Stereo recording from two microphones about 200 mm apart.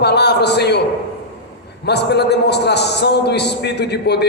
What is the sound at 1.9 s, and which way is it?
A man's voice, 55° left (ahead or behind).